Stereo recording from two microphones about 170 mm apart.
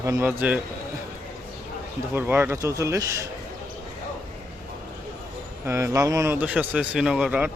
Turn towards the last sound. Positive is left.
turn(degrees=-5)  # may be behind; listen again after turning